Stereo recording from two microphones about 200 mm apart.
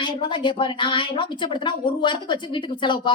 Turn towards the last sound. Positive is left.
turn(degrees=25)  # may be behind; listen again after turning